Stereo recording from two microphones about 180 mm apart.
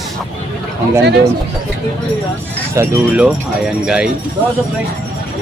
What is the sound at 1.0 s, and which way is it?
Speech, 70° right (ahead or behind).